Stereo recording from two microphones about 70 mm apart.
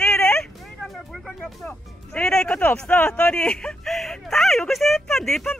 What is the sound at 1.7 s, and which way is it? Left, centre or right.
Speech, centre.